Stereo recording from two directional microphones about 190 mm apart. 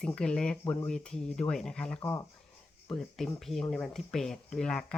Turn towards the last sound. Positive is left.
turn(degrees=5)  # may be behind; listen again after turning